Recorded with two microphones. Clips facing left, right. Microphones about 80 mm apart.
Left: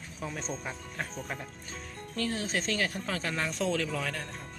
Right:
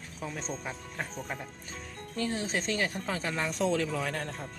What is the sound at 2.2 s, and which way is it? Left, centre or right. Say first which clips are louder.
A woman's voice: even; right.